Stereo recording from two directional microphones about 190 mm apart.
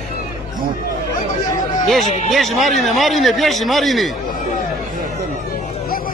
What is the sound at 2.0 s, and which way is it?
Speech, 40° left (ahead or behind).